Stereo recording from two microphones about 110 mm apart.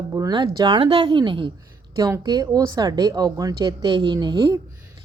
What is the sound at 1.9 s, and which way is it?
Speech, 35° right (ahead or behind).